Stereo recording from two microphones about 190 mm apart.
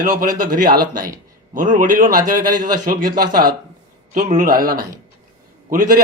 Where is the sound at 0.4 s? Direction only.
45° right (ahead or behind).